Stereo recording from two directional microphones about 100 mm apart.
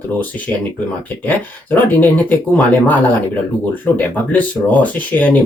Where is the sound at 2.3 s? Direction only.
15° left (ahead or behind).